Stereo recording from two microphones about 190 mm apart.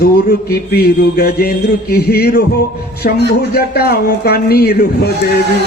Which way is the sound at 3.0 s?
50° left (ahead or behind).